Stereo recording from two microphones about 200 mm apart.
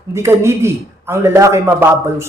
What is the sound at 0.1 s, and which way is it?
Speech, 15° right (ahead or behind).